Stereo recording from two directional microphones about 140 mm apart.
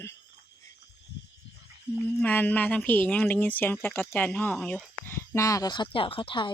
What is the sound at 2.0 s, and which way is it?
A woman's voice, 10° left (ahead or behind).